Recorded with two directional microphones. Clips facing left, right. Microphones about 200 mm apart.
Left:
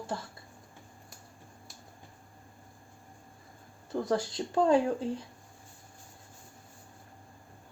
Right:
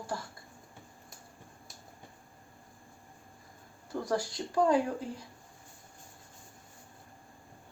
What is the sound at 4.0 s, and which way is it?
Speech, 25° left (ahead or behind).